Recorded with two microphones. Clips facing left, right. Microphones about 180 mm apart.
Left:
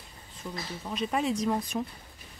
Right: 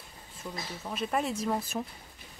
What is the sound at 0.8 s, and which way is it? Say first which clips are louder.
Speech: left 1 dB; 5° right (ahead or behind).